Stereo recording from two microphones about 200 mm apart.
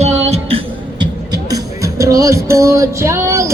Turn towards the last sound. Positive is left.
turn(degrees=-15)  # may be behind; listen again after turning